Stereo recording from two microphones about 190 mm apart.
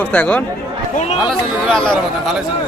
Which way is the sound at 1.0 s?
35° left (ahead or behind).